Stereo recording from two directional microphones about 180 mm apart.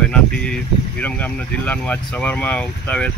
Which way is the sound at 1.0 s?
10° left (ahead or behind).